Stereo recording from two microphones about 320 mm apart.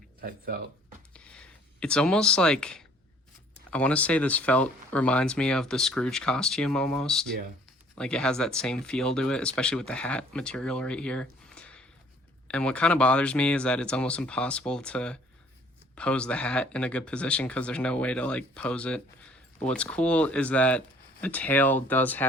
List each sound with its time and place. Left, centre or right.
0.2 s speech: right
1.1 s a sound: centre
3.7 s speech: centre